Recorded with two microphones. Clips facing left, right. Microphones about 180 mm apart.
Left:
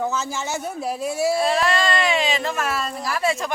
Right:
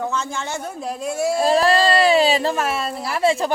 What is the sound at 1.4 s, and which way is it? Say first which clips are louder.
Speech: right 4 dB; 35° right (ahead or behind).